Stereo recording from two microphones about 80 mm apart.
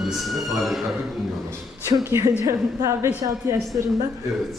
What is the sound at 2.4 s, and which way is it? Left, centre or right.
Speech, right.